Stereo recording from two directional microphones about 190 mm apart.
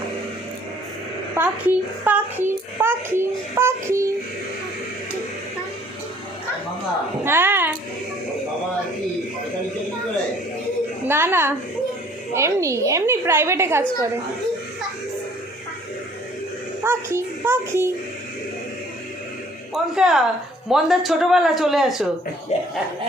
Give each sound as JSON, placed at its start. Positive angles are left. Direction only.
{"t": 1.4, "sound": "a child's voice", "side_deg": -10}
{"t": 7.3, "sound": "a sound", "side_deg": -10}
{"t": 11.1, "sound": "a child's voice", "side_deg": -10}
{"t": 16.8, "sound": "a child's voice", "side_deg": -10}
{"t": 19.7, "sound": "speech", "side_deg": -5}
{"t": 22.5, "sound": "speech", "side_deg": 35}